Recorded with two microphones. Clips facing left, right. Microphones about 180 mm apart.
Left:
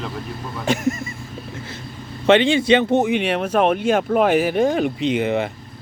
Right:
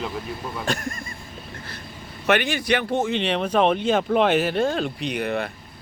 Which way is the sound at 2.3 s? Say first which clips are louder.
Left 7 dB; 25° left (ahead or behind).